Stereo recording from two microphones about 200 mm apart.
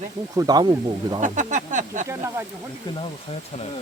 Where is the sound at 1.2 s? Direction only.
40° right (ahead or behind).